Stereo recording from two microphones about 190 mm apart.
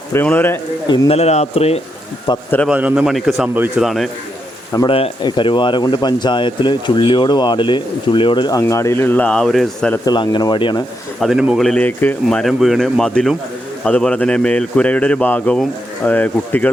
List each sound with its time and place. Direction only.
0.1 s a man's voice: 10° left (ahead or behind)
0.9 s speech: 30° left (ahead or behind)
2.6 s speech: 5° right (ahead or behind)
4.7 s speech: 20° left (ahead or behind); by 9.9 s centre (ahead or behind)
10.1 s speech: 25° left (ahead or behind)
11.2 s a man's voice: 5° right (ahead or behind)